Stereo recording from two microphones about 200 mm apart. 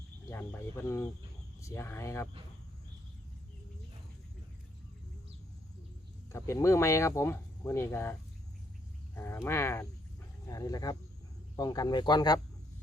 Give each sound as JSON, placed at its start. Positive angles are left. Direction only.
{"t": 0.3, "sound": "speech", "side_deg": 10}
{"t": 6.3, "sound": "speech", "side_deg": 15}
{"t": 9.1, "sound": "speech", "side_deg": 10}